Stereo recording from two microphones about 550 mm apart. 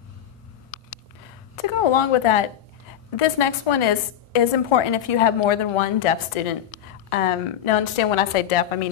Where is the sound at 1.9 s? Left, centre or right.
Left.